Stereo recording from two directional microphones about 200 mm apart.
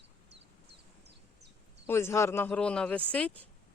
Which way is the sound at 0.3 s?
60° right (ahead or behind).